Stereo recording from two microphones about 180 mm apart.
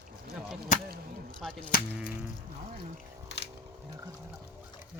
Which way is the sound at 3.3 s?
70° left (ahead or behind).